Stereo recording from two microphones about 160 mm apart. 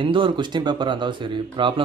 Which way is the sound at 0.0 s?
30° right (ahead or behind).